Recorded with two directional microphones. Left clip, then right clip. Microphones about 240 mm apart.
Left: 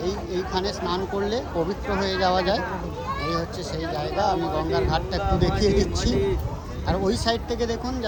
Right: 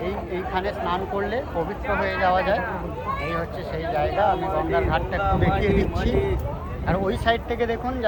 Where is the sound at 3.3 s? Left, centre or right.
Centre.